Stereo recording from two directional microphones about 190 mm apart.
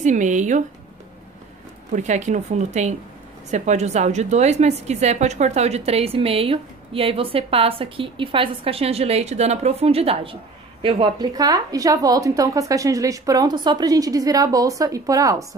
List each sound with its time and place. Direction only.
0.0 s a woman's voice: 40° right (ahead or behind)
2.0 s a woman's voice: 40° right (ahead or behind); by 15.4 s 15° right (ahead or behind)